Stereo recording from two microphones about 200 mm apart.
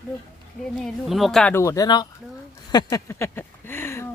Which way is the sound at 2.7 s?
20° left (ahead or behind).